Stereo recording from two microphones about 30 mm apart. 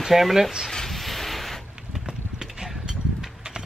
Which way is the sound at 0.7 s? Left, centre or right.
Centre.